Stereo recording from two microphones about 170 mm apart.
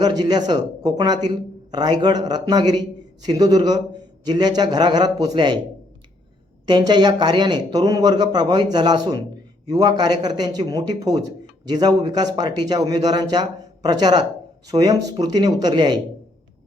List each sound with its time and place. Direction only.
0.0 s a man's voice: 25° right (ahead or behind)
6.7 s a man's voice: 25° right (ahead or behind)